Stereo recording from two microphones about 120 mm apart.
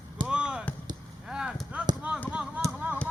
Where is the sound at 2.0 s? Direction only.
10° right (ahead or behind).